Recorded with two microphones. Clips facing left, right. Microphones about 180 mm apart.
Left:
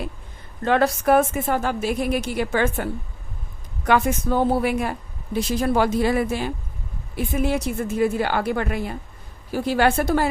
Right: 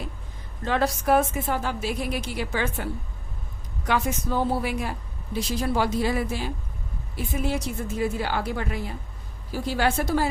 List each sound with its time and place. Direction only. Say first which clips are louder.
0.6 s a woman's voice: left 5 dB; 60° left (ahead or behind)